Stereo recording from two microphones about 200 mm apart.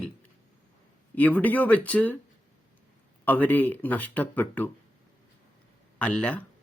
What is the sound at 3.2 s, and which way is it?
A man's voice, 10° left (ahead or behind).